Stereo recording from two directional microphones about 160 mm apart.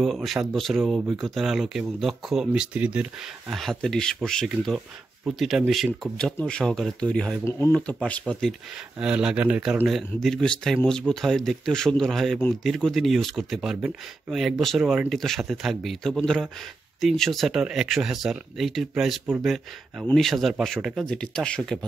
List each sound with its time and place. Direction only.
0.0 s speech: centre (ahead or behind)
7.4 s speech: 20° left (ahead or behind)
7.7 s speech: centre (ahead or behind)
9.0 s speech: 5° right (ahead or behind)